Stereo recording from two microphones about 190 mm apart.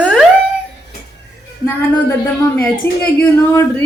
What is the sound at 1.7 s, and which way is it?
Speech, 15° left (ahead or behind).